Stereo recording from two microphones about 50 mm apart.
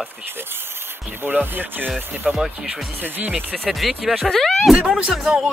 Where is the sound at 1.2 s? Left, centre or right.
Right.